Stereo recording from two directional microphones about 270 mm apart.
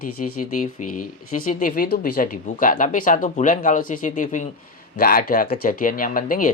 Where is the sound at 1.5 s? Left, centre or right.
Left.